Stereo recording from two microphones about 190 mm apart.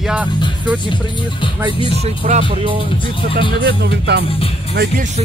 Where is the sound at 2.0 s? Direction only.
40° right (ahead or behind).